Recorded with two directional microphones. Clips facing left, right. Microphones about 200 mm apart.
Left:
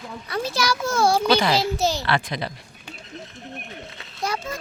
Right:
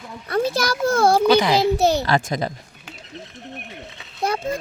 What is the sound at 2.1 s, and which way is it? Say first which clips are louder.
Speech: right 4 dB; 45° right (ahead or behind).